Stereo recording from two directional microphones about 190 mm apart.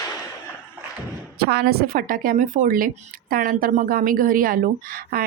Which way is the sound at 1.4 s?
55° right (ahead or behind).